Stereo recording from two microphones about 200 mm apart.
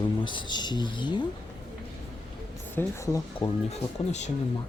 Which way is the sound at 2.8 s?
15° left (ahead or behind).